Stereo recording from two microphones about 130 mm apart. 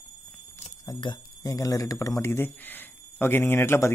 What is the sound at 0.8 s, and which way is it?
Speech, 25° left (ahead or behind).